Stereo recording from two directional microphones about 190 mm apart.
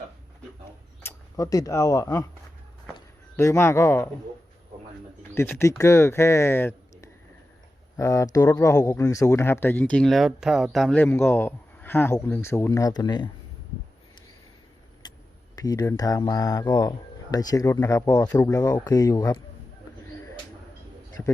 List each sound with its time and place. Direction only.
1.0 s speech: 15° left (ahead or behind)
3.3 s speech: 15° left (ahead or behind)
5.3 s speech: 10° left (ahead or behind)
7.9 s speech: 15° left (ahead or behind)
15.0 s a sound: 20° left (ahead or behind)
15.5 s speech: 20° left (ahead or behind)